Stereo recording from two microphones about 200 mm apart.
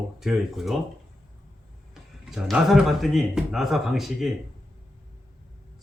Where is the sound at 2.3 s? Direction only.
Centre (ahead or behind).